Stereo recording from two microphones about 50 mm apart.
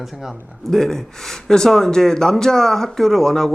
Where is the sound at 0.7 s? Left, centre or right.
Centre.